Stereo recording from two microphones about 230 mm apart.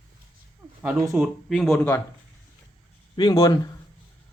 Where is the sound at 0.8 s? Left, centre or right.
Centre.